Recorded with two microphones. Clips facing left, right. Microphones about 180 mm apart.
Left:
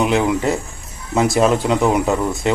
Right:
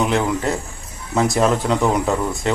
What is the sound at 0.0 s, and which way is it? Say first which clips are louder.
Speech: left 3 dB; 15° left (ahead or behind).